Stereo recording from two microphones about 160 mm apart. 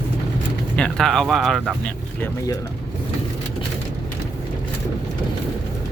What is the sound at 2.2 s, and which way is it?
Speech, 20° left (ahead or behind).